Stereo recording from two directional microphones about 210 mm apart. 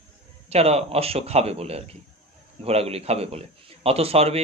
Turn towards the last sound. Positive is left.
turn(degrees=-30)  # may be behind; listen again after turning